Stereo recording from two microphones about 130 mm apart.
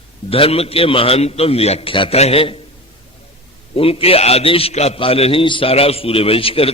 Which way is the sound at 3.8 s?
45° left (ahead or behind).